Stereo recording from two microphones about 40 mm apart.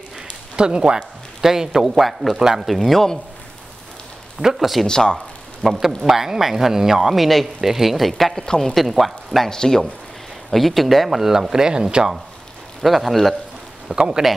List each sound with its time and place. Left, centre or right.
0.6 s speech: right
1.4 s speech: centre
2.3 s speech: centre
2.8 s speech: centre
4.5 s speech: centre
4.8 s speech: centre
5.6 s speech: centre
9.5 s speech: centre
10.5 s speech: centre
12.8 s speech: centre
13.9 s speech: right